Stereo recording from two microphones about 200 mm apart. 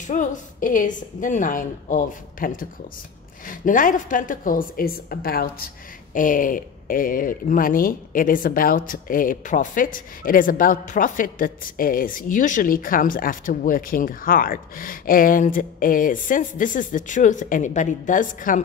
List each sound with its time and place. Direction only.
0.0 s a woman's voice: 40° left (ahead or behind)